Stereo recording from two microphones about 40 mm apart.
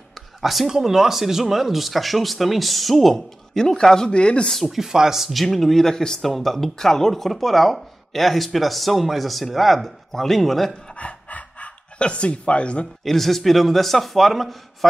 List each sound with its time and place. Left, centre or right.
0.1 s a sound: centre
0.7 s speech: centre; by 4.5 s left
4.6 s speech: centre
11.0 s pant: left
13.0 s speech: centre